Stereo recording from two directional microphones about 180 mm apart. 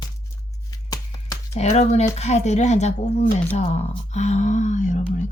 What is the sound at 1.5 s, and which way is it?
Speech, 40° left (ahead or behind).